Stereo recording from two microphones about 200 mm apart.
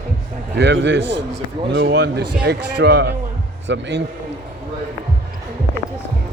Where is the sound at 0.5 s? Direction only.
60° right (ahead or behind).